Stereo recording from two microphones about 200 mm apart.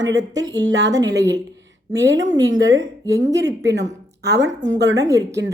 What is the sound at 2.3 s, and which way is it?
Speech, 20° right (ahead or behind).